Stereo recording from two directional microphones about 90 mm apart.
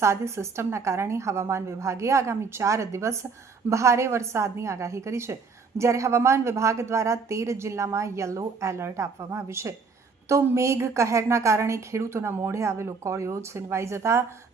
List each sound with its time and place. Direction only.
0.0 s a woman's voice: 30° right (ahead or behind)